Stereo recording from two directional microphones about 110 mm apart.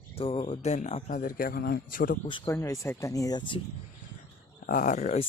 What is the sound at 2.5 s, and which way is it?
Speech, 25° left (ahead or behind).